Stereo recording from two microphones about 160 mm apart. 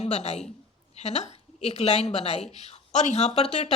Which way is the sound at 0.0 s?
45° left (ahead or behind).